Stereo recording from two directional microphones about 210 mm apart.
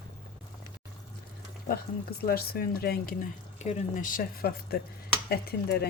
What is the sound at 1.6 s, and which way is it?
Speech, 45° left (ahead or behind).